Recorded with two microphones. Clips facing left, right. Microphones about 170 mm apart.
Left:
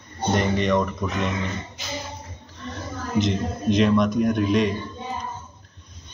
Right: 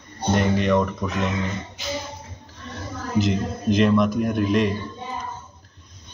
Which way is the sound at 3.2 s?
Centre (ahead or behind).